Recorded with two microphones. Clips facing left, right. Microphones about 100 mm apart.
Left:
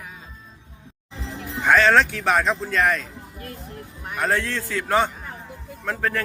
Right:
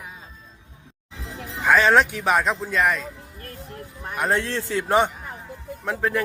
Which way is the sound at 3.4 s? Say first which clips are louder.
Left 1 dB; 40° right (ahead or behind).